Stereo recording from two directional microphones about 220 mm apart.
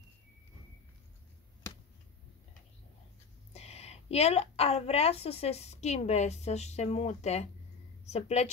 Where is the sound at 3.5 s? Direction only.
30° left (ahead or behind).